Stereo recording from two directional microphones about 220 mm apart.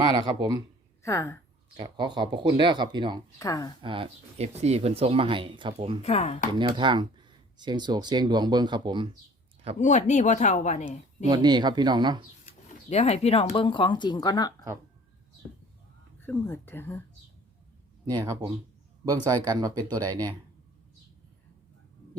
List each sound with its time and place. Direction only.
0.0 s speech: 20° right (ahead or behind)
1.0 s speech: 15° left (ahead or behind)
1.7 s speech: 20° right (ahead or behind)
3.3 s speech: 15° left (ahead or behind)
3.8 s speech: 25° right (ahead or behind)
6.0 s speech: 30° left (ahead or behind)
6.5 s speech: 20° right (ahead or behind)
9.8 s speech: 35° left (ahead or behind)
11.3 s speech: 20° right (ahead or behind)
12.6 s speech: 30° left (ahead or behind)
16.2 s speech: 10° left (ahead or behind)
18.3 s speech: 20° right (ahead or behind)